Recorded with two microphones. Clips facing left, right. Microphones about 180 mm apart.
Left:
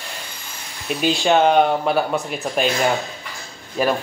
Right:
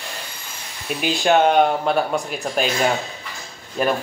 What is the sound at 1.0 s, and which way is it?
Speech, centre (ahead or behind).